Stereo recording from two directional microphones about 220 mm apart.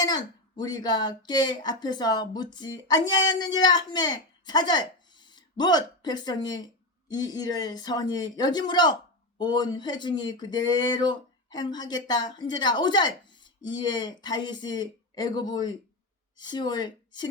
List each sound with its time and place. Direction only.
0.0 s speech: 20° left (ahead or behind)